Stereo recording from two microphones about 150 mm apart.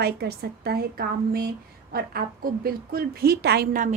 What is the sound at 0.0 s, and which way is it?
Speech, 90° right.